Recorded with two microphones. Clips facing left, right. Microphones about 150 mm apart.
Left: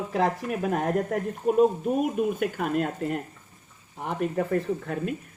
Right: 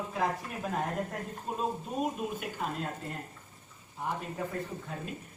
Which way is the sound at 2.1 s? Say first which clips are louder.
Left 10 dB; 60° left (ahead or behind).